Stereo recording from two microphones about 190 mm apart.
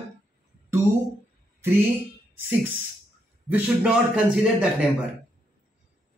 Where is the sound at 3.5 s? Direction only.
10° right (ahead or behind).